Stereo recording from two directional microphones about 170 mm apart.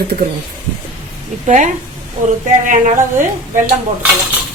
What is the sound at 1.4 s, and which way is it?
A woman's voice, 45° right (ahead or behind).